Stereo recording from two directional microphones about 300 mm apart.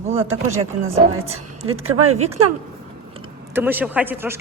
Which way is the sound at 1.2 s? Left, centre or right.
Centre.